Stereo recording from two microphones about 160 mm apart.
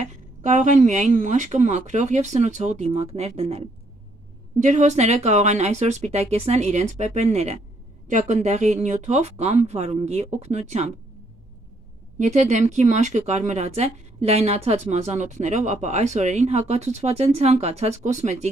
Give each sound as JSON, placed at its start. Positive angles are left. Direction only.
{"t": 0.0, "sound": "speech", "side_deg": -50}
{"t": 12.2, "sound": "speech", "side_deg": -45}